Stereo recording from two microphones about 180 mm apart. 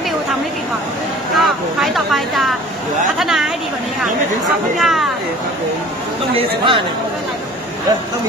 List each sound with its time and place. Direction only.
1.3 s vehicle: centre (ahead or behind)
3.2 s chatter: centre (ahead or behind)
4.7 s speech: centre (ahead or behind)
6.3 s speech: 30° right (ahead or behind)